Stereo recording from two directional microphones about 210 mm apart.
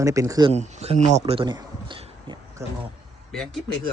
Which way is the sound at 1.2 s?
25° right (ahead or behind).